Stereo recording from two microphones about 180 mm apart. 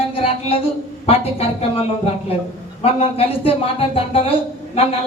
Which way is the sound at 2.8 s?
35° left (ahead or behind).